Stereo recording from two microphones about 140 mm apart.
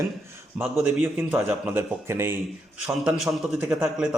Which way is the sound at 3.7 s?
5° right (ahead or behind).